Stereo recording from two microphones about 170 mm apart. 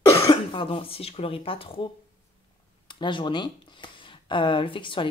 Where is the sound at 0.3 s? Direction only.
30° left (ahead or behind).